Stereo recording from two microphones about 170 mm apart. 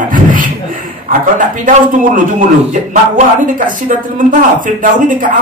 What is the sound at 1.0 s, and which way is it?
A woman's voice, 55° right (ahead or behind).